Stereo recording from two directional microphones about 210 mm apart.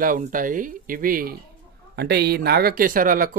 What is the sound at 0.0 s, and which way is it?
Speech, 40° right (ahead or behind).